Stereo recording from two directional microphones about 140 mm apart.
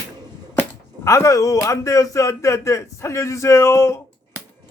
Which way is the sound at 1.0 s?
20° left (ahead or behind).